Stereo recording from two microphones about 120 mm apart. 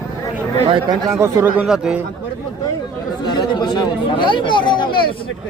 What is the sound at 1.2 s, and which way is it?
Speech, 20° right (ahead or behind).